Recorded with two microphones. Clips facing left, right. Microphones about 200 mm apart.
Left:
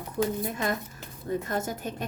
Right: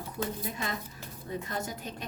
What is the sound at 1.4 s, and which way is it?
Speech, 50° left (ahead or behind).